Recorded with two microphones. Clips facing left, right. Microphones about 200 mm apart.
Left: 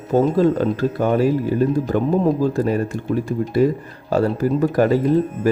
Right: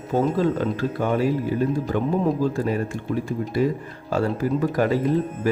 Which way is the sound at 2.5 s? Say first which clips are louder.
Left 4 dB; 40° left (ahead or behind).